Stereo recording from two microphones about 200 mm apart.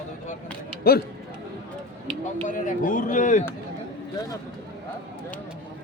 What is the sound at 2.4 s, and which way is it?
Speech, 40° left (ahead or behind).